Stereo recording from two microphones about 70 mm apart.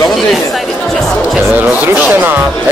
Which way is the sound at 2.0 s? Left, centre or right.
Right.